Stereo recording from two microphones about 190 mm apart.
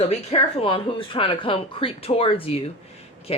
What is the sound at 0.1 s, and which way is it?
Speech, 30° left (ahead or behind).